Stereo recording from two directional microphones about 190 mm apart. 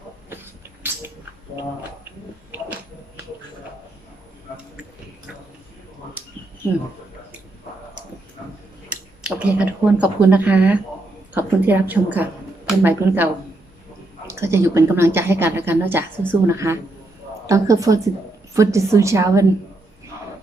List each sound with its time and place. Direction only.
8.9 s speech: 5° right (ahead or behind)
14.3 s a woman's voice: 15° right (ahead or behind)